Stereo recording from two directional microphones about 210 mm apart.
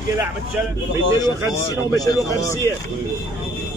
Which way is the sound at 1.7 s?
15° left (ahead or behind).